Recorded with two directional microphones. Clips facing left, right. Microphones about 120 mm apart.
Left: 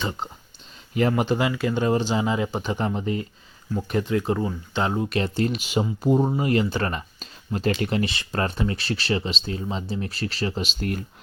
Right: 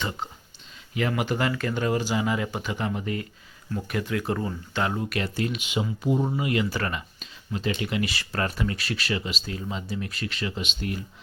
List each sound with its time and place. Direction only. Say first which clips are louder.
0.9 s speech: left 5 dB; 35° left (ahead or behind)
1.3 s speech: left 3 dB; 15° left (ahead or behind); by 8.1 s 40° left (ahead or behind)
8.1 s speech: left 2 dB; 20° left (ahead or behind)